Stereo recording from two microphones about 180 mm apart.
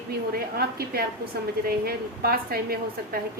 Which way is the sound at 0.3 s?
60° right (ahead or behind).